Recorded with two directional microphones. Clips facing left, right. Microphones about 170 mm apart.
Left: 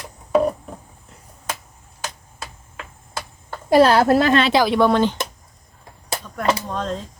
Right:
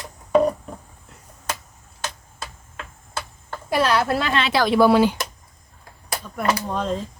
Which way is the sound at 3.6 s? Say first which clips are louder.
Left 7 dB; 35° left (ahead or behind).